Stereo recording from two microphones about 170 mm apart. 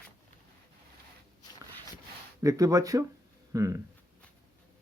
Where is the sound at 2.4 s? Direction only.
20° right (ahead or behind).